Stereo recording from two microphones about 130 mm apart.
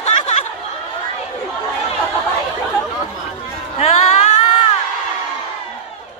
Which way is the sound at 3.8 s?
65° left (ahead or behind).